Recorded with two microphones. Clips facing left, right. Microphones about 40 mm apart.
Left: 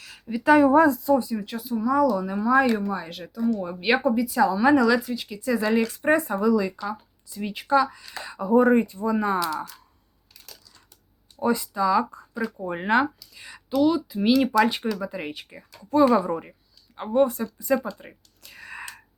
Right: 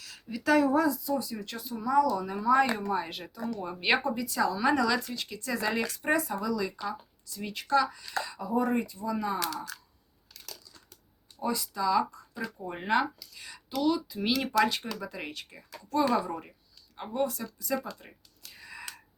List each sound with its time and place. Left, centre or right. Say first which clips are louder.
0.0 s a sound: left 6 dB; left
0.3 s speech: left 8 dB; left
1.2 s speech: left 8 dB; left
1.5 s speech: left 7 dB; centre
2.9 s speech: left 1 dB; centre
5.9 s speech: left 6 dB; left
11.3 s speech: left 8 dB; left
18.5 s wheeze: left 7 dB; left